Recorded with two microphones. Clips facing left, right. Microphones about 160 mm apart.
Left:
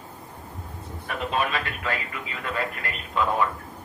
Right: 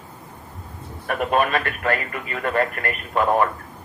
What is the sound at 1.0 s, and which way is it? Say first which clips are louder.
Speech: right 6 dB; 55° right (ahead or behind).